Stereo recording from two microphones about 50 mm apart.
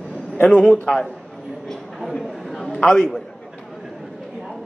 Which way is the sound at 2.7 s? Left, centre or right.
Centre.